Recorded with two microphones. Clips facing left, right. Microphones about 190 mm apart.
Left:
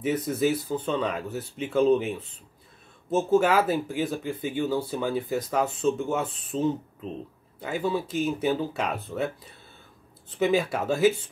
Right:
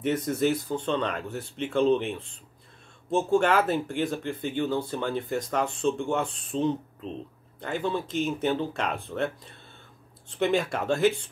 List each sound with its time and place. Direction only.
0.0 s speech: 5° left (ahead or behind)